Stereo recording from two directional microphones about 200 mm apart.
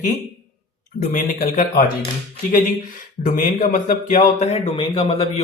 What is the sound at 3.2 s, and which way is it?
Speech, 40° left (ahead or behind).